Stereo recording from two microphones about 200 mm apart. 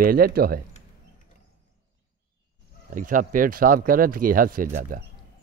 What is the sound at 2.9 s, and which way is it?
Speech, 40° right (ahead or behind).